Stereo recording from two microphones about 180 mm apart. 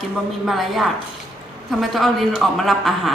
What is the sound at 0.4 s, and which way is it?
Speech, centre (ahead or behind).